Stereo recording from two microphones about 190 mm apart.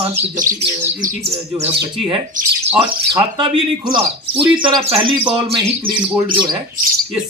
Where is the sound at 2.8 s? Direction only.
25° right (ahead or behind).